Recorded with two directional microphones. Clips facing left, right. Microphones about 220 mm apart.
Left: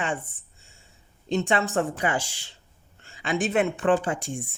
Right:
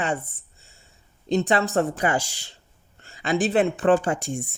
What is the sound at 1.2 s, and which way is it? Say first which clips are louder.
Speech: right 3 dB; 40° right (ahead or behind).